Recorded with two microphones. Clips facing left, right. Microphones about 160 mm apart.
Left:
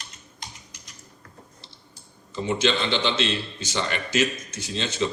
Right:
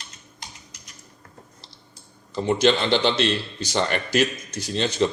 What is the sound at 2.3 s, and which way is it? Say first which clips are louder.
A man's voice: right 4 dB; 40° right (ahead or behind).